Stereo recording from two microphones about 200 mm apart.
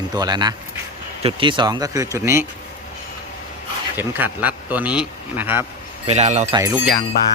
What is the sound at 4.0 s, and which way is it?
Speech, 10° right (ahead or behind).